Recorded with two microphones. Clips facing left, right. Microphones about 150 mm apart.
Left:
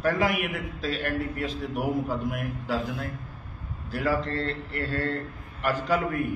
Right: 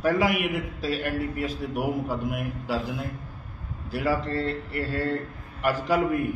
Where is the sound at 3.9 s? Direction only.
10° right (ahead or behind).